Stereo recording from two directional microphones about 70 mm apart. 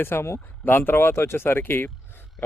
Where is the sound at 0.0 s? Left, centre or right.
Left.